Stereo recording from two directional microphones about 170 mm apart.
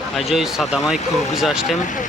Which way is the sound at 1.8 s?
50° left (ahead or behind).